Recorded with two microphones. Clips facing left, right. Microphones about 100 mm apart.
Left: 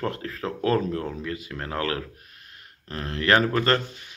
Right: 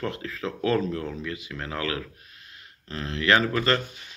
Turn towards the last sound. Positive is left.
turn(degrees=45)  # may be behind; listen again after turning